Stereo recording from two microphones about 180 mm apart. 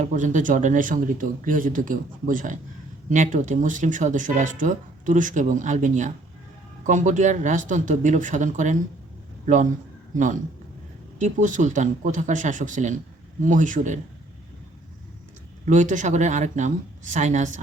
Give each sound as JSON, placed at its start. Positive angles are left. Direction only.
{"t": 0.0, "sound": "speech", "side_deg": -45}
{"t": 11.2, "sound": "speech", "side_deg": -45}
{"t": 15.6, "sound": "speech", "side_deg": -45}